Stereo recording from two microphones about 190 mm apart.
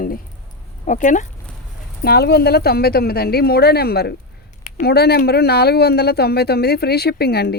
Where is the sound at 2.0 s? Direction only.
55° left (ahead or behind).